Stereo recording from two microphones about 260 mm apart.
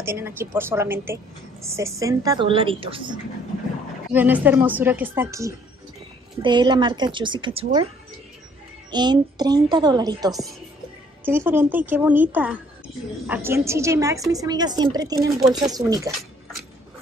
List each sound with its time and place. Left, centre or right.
0.0 s a woman's voice: centre
4.1 s a woman's voice: centre
8.9 s a woman's voice: centre